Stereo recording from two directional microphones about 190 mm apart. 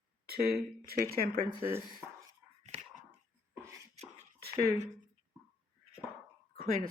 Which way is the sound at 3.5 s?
15° right (ahead or behind).